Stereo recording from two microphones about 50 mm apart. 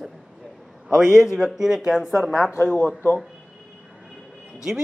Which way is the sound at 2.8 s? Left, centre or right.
Left.